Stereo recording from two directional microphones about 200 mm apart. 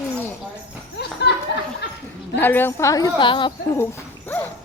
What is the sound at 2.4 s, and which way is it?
Speech, 10° left (ahead or behind).